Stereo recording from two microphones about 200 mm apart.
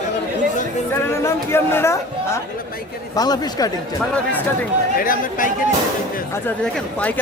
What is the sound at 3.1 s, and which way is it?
Speech, 20° left (ahead or behind).